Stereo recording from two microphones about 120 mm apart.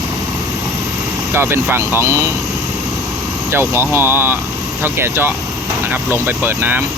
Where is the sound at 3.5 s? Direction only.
20° right (ahead or behind).